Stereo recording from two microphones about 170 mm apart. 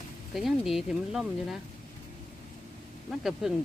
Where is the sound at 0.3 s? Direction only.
Centre (ahead or behind).